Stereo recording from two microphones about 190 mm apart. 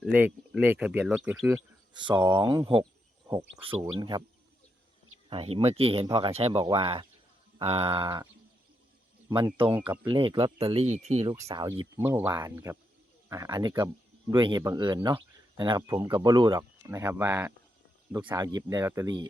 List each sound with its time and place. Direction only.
0.0 s speech: 5° right (ahead or behind)
1.9 s speech: 25° right (ahead or behind)
5.3 s speech: 30° right (ahead or behind)
9.6 s speech: 25° right (ahead or behind)
11.3 s speech: 20° right (ahead or behind)
12.0 s speech: 15° right (ahead or behind)